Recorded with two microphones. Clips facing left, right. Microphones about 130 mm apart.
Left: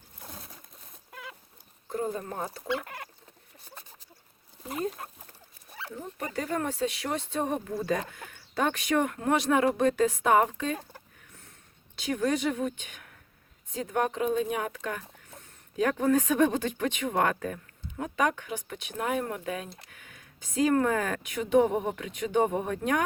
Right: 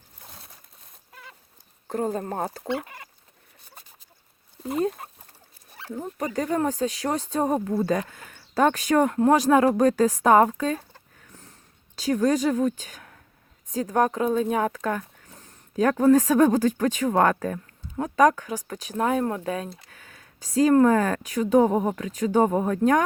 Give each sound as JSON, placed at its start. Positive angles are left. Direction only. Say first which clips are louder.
{"t": 2.0, "sound": "speech", "louder": "right 6 dB", "side_deg": -45}
{"t": 5.9, "sound": "speech", "louder": "right 7 dB", "side_deg": -45}
{"t": 11.9, "sound": "speech", "louder": "right 6 dB", "side_deg": -35}